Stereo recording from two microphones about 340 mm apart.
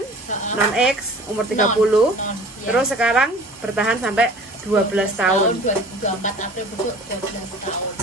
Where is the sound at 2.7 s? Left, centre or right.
Centre.